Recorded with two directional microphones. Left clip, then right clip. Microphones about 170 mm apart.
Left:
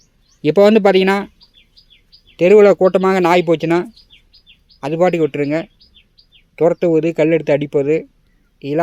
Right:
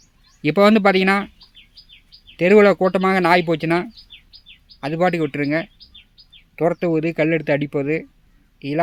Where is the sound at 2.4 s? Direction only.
20° left (ahead or behind).